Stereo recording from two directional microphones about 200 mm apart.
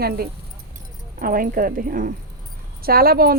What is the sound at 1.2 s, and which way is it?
Speech, 45° right (ahead or behind).